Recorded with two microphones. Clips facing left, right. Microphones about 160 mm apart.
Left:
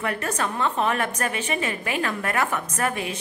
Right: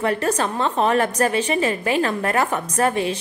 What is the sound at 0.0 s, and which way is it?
A woman's voice, 30° right (ahead or behind).